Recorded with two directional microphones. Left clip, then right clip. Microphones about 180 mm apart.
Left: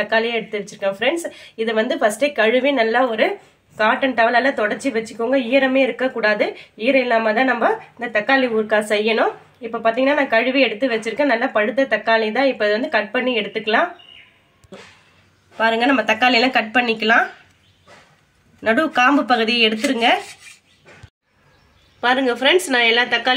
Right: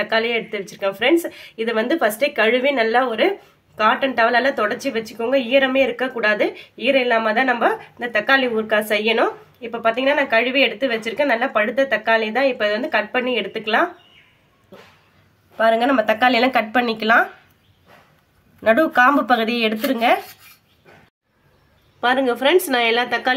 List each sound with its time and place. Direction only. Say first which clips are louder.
0.0 s speech: left 1 dB; 15° right (ahead or behind)
14.7 s a sound: left 4 dB; centre (ahead or behind)
15.5 s speech: right 1 dB; 15° right (ahead or behind)
18.6 s speech: right 2 dB; 20° right (ahead or behind)
22.0 s speech: left 1 dB; 10° right (ahead or behind)